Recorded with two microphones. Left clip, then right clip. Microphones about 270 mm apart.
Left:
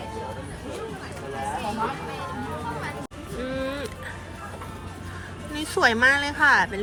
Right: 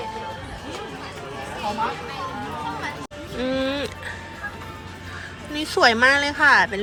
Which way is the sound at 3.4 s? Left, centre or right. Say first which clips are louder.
Right 6 dB; centre.